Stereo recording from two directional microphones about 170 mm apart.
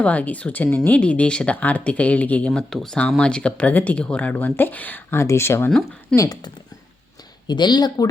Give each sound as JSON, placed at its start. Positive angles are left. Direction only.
{"t": 0.0, "sound": "speech", "side_deg": 10}